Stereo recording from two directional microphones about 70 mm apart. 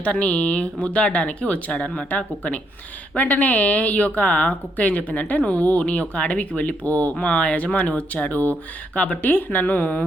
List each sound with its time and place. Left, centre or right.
0.0 s a woman's voice: centre